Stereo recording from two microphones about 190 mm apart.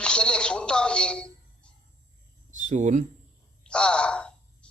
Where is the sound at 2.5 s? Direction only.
40° right (ahead or behind).